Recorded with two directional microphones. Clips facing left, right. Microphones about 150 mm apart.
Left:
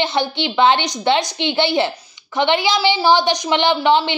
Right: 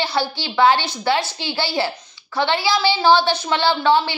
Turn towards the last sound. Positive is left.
turn(degrees=20)  # may be behind; listen again after turning